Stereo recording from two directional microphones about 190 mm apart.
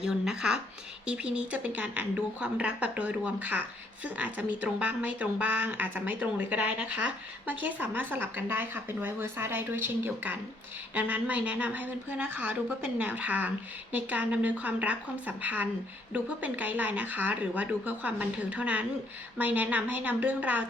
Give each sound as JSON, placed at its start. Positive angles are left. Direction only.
{"t": 0.0, "sound": "speech", "side_deg": -5}